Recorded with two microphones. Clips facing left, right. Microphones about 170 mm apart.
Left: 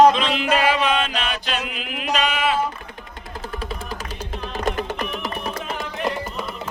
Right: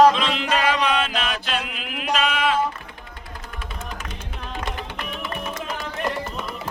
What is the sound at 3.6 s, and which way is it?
Music, 35° left (ahead or behind).